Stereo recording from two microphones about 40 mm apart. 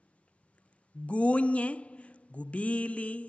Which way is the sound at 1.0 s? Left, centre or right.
Left.